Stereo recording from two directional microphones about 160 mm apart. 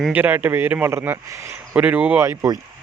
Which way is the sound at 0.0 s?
10° right (ahead or behind).